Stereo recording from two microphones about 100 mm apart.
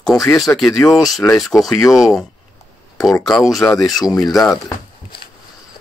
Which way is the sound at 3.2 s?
Centre (ahead or behind).